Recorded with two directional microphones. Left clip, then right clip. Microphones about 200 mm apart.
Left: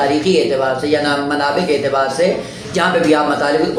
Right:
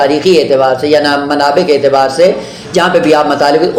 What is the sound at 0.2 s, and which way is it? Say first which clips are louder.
A woman's voice: right 7 dB; 40° right (ahead or behind).